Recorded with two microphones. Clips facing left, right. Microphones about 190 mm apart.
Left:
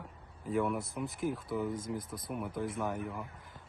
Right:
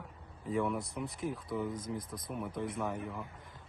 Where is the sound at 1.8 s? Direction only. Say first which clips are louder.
Left 1 dB; 25° left (ahead or behind).